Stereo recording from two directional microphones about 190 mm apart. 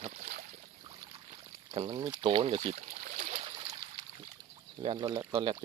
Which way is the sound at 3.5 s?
25° right (ahead or behind).